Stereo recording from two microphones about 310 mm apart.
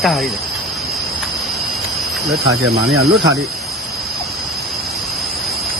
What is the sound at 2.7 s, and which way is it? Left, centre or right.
Speech, right.